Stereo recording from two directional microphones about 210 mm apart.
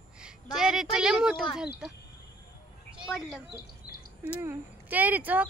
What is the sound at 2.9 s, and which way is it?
Speech, 5° right (ahead or behind).